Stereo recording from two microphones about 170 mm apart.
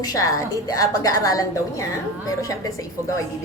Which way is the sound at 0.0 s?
20° left (ahead or behind).